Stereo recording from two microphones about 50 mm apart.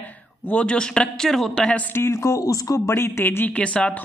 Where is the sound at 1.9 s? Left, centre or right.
Left.